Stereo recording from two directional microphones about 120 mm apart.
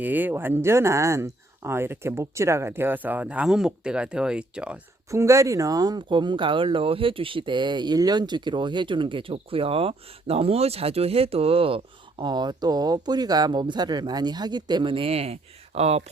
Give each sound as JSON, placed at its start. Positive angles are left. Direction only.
{"t": 0.0, "sound": "speech", "side_deg": -15}
{"t": 5.1, "sound": "speech", "side_deg": -25}
{"t": 12.2, "sound": "speech", "side_deg": -35}